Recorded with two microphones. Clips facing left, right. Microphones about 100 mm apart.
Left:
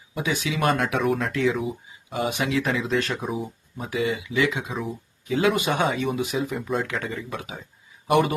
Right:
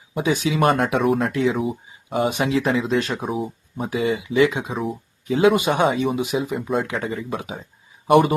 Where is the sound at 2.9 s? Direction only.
20° right (ahead or behind).